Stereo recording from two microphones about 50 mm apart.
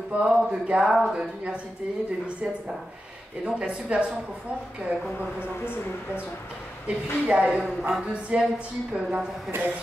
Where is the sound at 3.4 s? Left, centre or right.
Right.